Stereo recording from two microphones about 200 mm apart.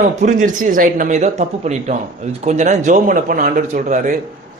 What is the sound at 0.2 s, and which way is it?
Speech, 40° right (ahead or behind).